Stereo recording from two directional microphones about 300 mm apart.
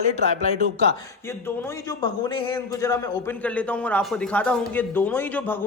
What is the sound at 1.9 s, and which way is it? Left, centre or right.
A man's voice, centre.